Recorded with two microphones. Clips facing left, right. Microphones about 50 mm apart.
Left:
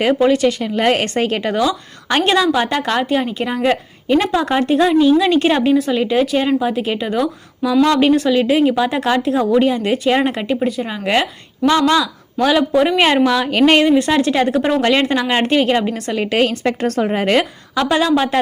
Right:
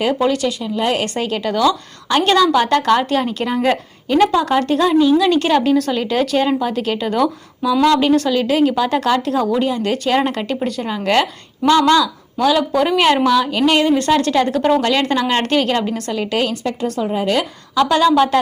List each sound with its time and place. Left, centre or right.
0.0 s a woman's voice: left; by 11.3 s centre
12.5 s a woman's voice: left
13.4 s speech: left
13.8 s speech: centre
14.8 s speech: left
15.0 s speech: centre
16.0 s speech: left
16.8 s speech: left
17.7 s a woman's voice: left